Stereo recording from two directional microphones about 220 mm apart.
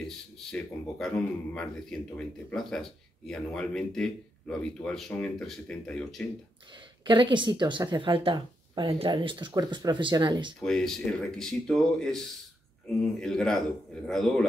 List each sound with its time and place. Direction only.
0.0 s speech: 5° left (ahead or behind)
7.1 s a woman's voice: 20° right (ahead or behind)
10.6 s speech: centre (ahead or behind)